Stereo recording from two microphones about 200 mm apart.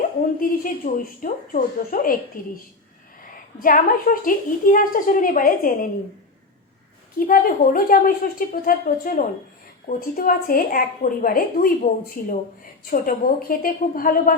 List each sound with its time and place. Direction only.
0.3 s a woman's voice: 40° left (ahead or behind)
3.6 s a woman's voice: 45° left (ahead or behind)
7.2 s a woman's voice: 45° left (ahead or behind)